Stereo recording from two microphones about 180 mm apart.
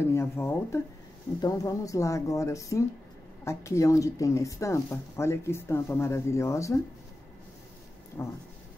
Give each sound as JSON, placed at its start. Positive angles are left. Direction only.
{"t": 0.0, "sound": "speech", "side_deg": 15}
{"t": 8.2, "sound": "speech", "side_deg": 15}